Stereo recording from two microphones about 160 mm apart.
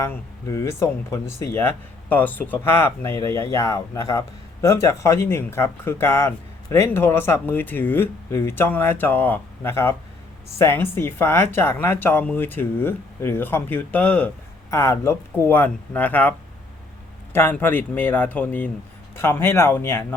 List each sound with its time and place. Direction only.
0.0 s speech: 15° left (ahead or behind)
17.3 s speech: 15° left (ahead or behind)